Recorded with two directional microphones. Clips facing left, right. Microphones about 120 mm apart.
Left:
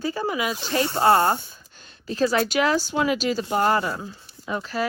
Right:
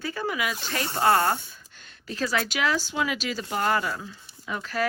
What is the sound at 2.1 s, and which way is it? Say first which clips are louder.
Speech: left 6 dB; 35° left (ahead or behind).